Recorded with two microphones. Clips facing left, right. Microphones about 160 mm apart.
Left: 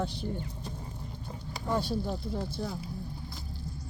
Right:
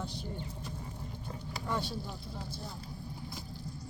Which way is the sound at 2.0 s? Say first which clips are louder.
Left 9 dB; 65° left (ahead or behind).